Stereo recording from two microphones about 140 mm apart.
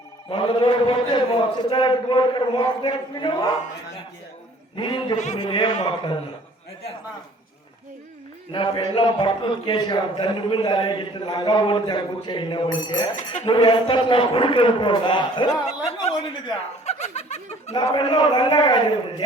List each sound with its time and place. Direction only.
0.3 s a man's voice: 35° left (ahead or behind)
4.8 s a man's voice: 35° left (ahead or behind)
5.1 s speech: 55° left (ahead or behind)
5.4 s a man's voice: 30° left (ahead or behind)
8.5 s a man's voice: 35° left (ahead or behind)
13.1 s speech: 55° left (ahead or behind)
13.5 s a man's voice: 35° left (ahead or behind)
15.6 s speech: 50° left (ahead or behind)
16.8 s snicker: 50° left (ahead or behind)
17.7 s a man's voice: 35° left (ahead or behind)